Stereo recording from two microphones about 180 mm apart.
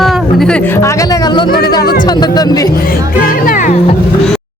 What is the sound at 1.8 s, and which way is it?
Speech, 55° left (ahead or behind).